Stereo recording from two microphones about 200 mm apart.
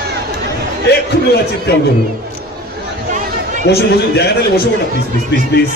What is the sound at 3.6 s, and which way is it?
A man's voice, 55° left (ahead or behind).